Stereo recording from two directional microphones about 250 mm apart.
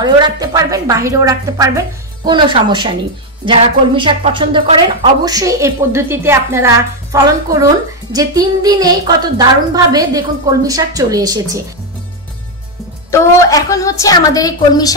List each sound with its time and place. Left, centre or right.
0.0 s speech: centre
13.1 s a woman's voice: centre